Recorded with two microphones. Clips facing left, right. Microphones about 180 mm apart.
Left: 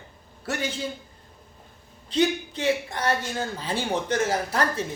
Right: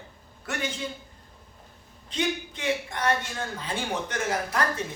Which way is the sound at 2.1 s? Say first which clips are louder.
Left 6 dB; 35° left (ahead or behind).